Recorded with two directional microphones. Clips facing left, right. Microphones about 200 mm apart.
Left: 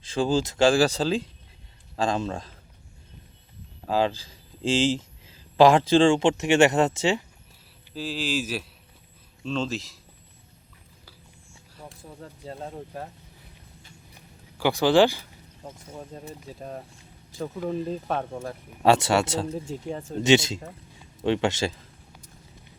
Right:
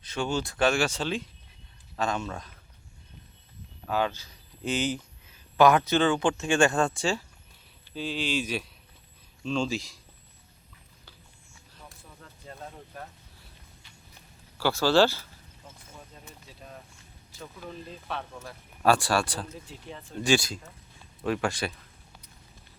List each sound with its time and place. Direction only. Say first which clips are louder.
0.0 s speech: left 6 dB; 30° left (ahead or behind)
3.8 s speech: left 4 dB; 30° left (ahead or behind)
7.9 s speech: left 1 dB; centre (ahead or behind)
11.9 s speech: left 10 dB; 30° left (ahead or behind)
14.6 s speech: left 3 dB; 15° left (ahead or behind)
15.6 s speech: left 10 dB; 40° left (ahead or behind)
18.8 s speech: left 4 dB; 25° left (ahead or behind)
19.6 s speech: left 11 dB; 45° left (ahead or behind)
20.2 s speech: left 5 dB; 25° left (ahead or behind)